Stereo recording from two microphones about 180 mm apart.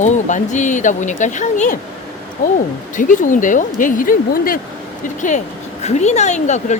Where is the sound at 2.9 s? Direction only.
45° left (ahead or behind).